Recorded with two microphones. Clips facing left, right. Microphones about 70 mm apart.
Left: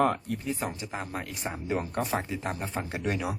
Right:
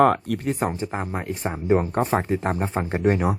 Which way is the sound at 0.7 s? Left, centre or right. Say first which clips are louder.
Right 7 dB; right.